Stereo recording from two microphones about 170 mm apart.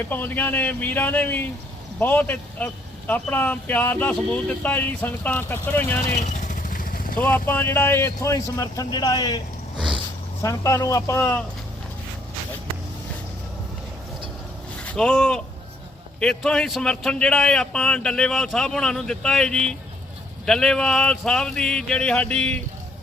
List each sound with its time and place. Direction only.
0.1 s speech: 10° left (ahead or behind)
6.1 s vehicle: 45° left (ahead or behind)
7.2 s speech: 10° left (ahead or behind)
9.7 s a sound: 30° right (ahead or behind)
10.4 s speech: 20° left (ahead or behind)
14.8 s speech: 5° left (ahead or behind)